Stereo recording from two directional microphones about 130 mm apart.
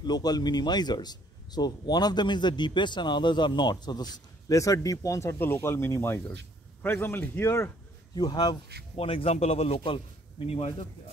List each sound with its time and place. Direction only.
0.0 s a man's voice: 30° left (ahead or behind)
8.1 s a man's voice: 30° left (ahead or behind)
8.9 s a man's voice: 45° left (ahead or behind)